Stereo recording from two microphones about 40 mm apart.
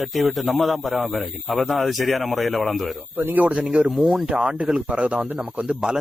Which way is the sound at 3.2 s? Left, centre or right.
Right.